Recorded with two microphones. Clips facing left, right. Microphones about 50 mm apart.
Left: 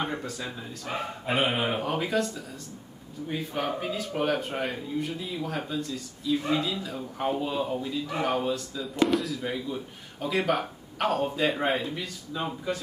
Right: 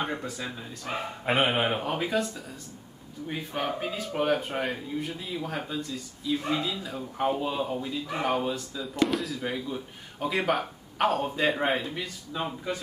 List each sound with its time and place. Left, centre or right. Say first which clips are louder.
0.0 s speech: even; centre
1.3 s a sound: right 2 dB; right
1.7 s speech: even; centre